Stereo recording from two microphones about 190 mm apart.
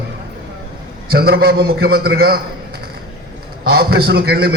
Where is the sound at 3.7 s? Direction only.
55° right (ahead or behind).